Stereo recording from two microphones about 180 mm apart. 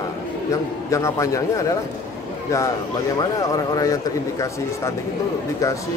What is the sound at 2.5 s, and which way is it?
Speech, 15° left (ahead or behind).